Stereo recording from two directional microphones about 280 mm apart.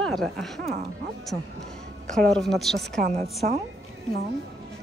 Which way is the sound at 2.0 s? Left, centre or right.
Centre.